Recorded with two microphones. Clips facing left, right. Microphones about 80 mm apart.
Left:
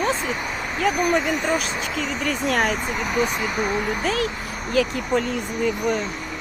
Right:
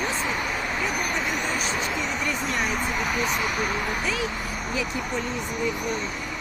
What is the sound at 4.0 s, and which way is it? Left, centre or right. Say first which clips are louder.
Speech: left 5 dB; left.